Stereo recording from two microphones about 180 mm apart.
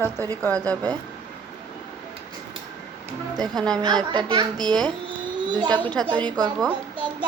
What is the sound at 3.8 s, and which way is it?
A child's voice, 25° right (ahead or behind).